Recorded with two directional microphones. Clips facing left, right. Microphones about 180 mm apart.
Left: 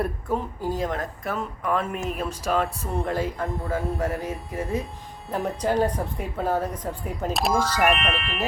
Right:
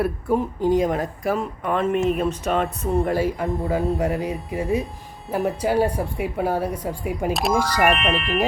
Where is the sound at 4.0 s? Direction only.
15° right (ahead or behind).